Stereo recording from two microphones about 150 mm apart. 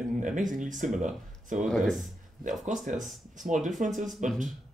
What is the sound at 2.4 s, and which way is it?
Speech, 55° right (ahead or behind).